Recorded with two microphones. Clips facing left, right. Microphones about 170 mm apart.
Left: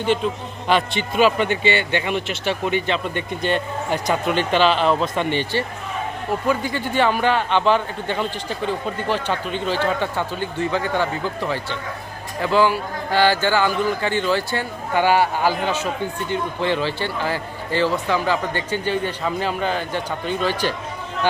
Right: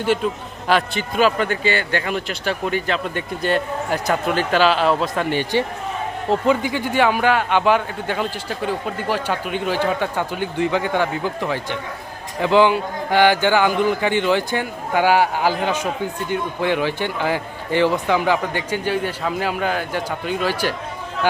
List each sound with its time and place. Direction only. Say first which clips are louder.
0.7 s speech: even; centre (ahead or behind)
1.2 s speech: left 1 dB; 20° left (ahead or behind)
1.6 s speech: left 1 dB; 45° right (ahead or behind)
2.1 s speech: even; 15° left (ahead or behind)
2.9 s a man's voice: even; 5° right (ahead or behind)